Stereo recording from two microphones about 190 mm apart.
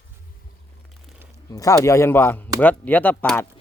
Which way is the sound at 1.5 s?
20° left (ahead or behind).